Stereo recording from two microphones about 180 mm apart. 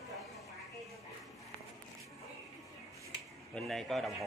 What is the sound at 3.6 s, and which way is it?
Speech, centre (ahead or behind).